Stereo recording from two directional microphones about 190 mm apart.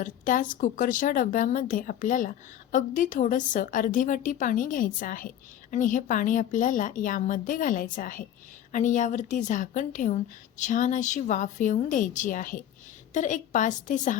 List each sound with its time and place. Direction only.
0.0 s a woman's voice: 45° left (ahead or behind)